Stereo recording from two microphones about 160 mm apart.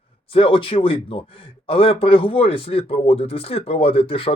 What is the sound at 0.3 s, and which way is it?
Speech, 35° left (ahead or behind).